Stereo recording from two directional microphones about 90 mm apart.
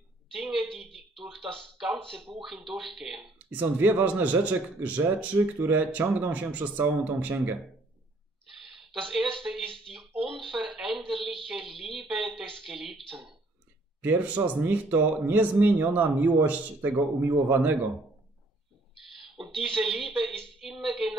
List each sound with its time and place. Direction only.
0.3 s a woman's voice: 5° right (ahead or behind)
3.3 s a man's voice: 20° right (ahead or behind)
9.1 s speech: 5° right (ahead or behind)
14.0 s a man's voice: 20° right (ahead or behind)
19.4 s speech: centre (ahead or behind)
20.7 s a sound: 5° right (ahead or behind)